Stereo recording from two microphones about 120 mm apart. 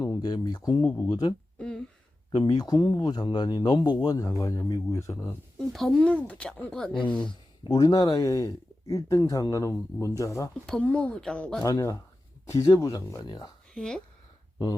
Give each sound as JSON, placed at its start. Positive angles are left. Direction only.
{"t": 0.0, "sound": "speech", "side_deg": 35}
{"t": 0.9, "sound": "speech", "side_deg": 10}
{"t": 1.5, "sound": "a sound", "side_deg": 5}
{"t": 2.3, "sound": "speech", "side_deg": 40}
{"t": 5.5, "sound": "speech", "side_deg": 5}
{"t": 7.3, "sound": "speech", "side_deg": 40}
{"t": 10.7, "sound": "speech", "side_deg": 10}
{"t": 11.6, "sound": "speech", "side_deg": 30}
{"t": 13.7, "sound": "speech", "side_deg": 5}